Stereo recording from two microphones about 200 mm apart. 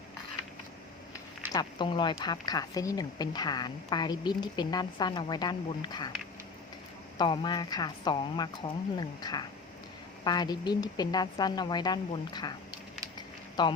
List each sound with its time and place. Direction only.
1.5 s speech: 25° left (ahead or behind)
7.2 s speech: 20° left (ahead or behind)
13.1 s a sound: 20° left (ahead or behind)